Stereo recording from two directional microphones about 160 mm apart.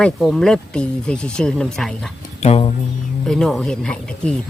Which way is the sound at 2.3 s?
40° left (ahead or behind).